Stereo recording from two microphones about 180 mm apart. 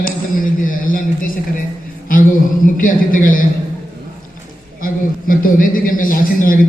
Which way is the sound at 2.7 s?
50° left (ahead or behind).